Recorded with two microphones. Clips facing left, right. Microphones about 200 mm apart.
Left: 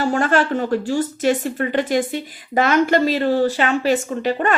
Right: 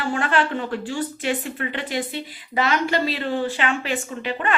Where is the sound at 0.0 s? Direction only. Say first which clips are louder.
Left 5 dB; 40° left (ahead or behind).